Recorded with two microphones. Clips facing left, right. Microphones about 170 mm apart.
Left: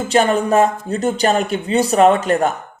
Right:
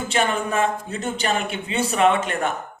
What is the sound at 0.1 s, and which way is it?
Speech, 40° left (ahead or behind).